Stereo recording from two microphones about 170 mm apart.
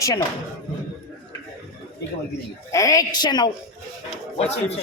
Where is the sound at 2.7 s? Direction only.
20° left (ahead or behind).